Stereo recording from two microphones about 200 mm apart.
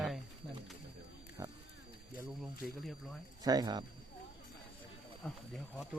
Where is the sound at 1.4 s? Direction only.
15° right (ahead or behind).